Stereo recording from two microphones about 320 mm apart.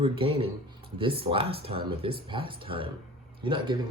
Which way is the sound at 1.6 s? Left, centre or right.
Centre.